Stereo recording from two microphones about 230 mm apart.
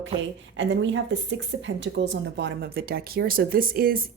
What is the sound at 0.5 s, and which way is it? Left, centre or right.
A woman's voice, right.